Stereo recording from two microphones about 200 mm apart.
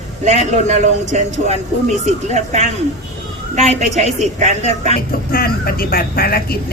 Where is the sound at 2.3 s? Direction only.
35° right (ahead or behind).